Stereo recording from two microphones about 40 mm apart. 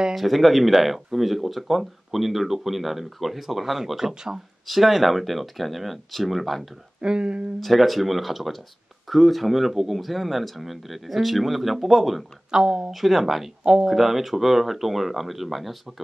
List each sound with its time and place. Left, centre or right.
0.1 s speech: centre
4.6 s speech: centre
7.0 s speech: right
7.6 s speech: centre
12.4 s speech: centre
12.9 s speech: centre